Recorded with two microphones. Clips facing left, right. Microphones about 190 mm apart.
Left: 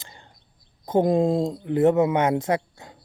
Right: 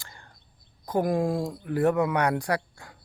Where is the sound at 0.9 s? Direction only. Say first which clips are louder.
Left 5 dB; 25° left (ahead or behind).